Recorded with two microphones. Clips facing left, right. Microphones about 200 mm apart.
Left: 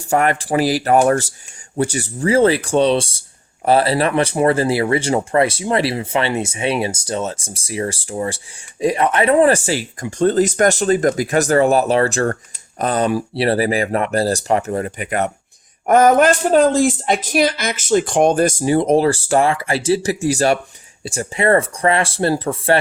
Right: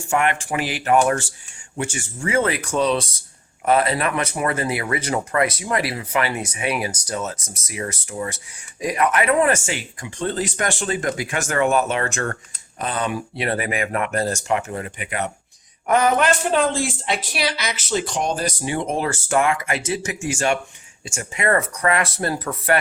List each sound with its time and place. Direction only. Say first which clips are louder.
0.0 s a woman's voice: left 4 dB; 35° left (ahead or behind)